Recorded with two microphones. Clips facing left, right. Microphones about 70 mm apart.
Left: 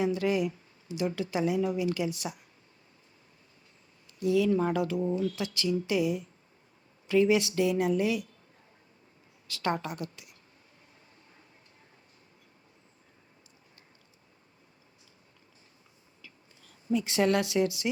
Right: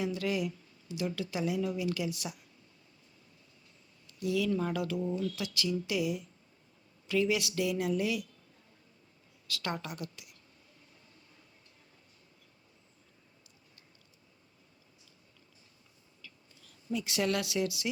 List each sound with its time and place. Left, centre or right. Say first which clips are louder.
0.0 s speech: left 5 dB; left
4.0 s speech: left 6 dB; left
9.5 s speech: left 6 dB; left
16.2 s a sound: left 1 dB; left